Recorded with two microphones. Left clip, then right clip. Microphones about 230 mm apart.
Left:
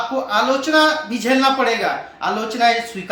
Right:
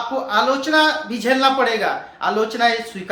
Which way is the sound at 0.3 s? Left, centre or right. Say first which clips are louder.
Even; right.